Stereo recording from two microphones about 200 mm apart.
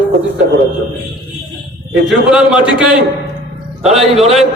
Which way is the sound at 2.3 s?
5° right (ahead or behind).